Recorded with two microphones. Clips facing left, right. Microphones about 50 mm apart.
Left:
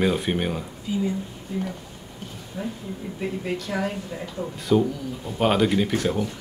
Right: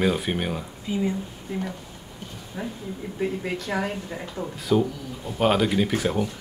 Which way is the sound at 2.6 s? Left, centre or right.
Centre.